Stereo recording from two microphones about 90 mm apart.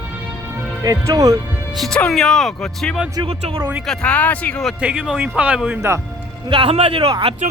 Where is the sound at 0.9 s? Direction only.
40° right (ahead or behind).